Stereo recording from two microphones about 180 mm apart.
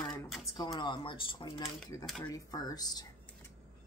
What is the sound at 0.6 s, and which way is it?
A woman's voice, 25° left (ahead or behind).